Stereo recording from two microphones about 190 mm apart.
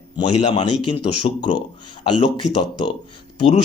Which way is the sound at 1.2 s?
35° left (ahead or behind).